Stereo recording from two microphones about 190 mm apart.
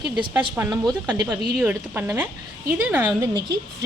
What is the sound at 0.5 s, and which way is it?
A woman's voice, 10° right (ahead or behind).